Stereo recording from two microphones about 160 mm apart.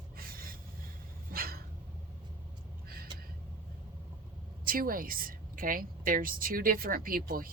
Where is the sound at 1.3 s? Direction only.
70° right (ahead or behind).